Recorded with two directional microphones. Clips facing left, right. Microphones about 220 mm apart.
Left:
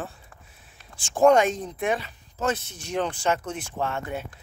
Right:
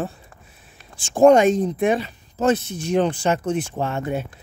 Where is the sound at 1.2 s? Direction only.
20° right (ahead or behind).